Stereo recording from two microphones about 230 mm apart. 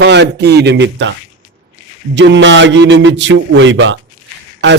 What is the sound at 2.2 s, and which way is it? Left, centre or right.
A man's voice, right.